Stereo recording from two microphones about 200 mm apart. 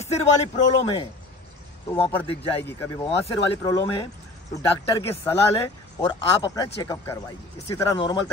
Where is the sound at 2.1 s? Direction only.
10° left (ahead or behind).